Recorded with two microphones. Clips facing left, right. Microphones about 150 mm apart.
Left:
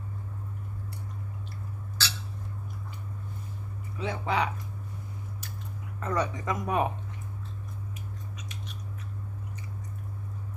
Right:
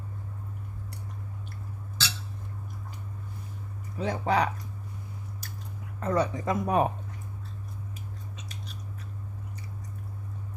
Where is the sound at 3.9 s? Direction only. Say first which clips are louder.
Right 3 dB; 40° right (ahead or behind).